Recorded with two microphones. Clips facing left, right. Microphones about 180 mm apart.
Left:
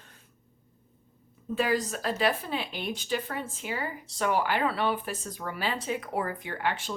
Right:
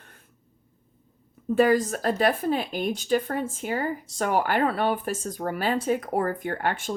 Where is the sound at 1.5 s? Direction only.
50° right (ahead or behind).